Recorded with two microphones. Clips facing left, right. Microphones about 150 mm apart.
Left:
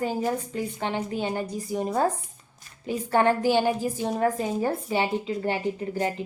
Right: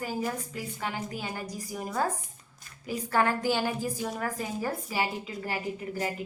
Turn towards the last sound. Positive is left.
turn(degrees=25)  # may be behind; listen again after turning